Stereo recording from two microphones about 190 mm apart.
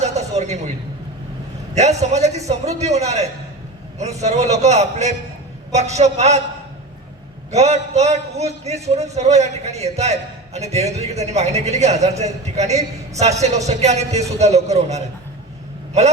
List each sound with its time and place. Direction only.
0.0 s a sound: 35° right (ahead or behind)
1.7 s a man's voice: 35° right (ahead or behind)
7.5 s a man's voice: 35° right (ahead or behind)
15.9 s vehicle: 35° right (ahead or behind)